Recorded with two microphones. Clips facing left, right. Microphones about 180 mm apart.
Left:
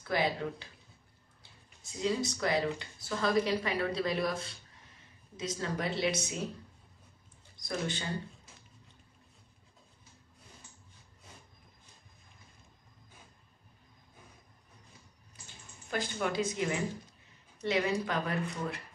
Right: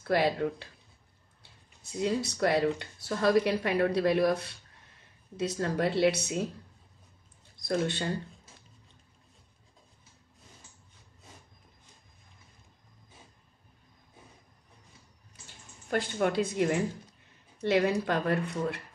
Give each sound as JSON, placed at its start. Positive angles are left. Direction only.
{"t": 0.0, "sound": "speech", "side_deg": -60}
{"t": 7.6, "sound": "speech", "side_deg": -60}
{"t": 15.9, "sound": "speech", "side_deg": -60}